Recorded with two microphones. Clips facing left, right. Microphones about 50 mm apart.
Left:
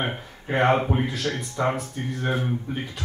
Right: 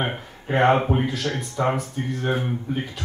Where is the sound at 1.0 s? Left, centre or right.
Centre.